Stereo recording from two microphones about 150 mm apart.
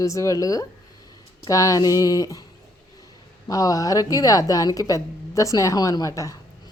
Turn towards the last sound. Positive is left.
turn(degrees=20)  # may be behind; listen again after turning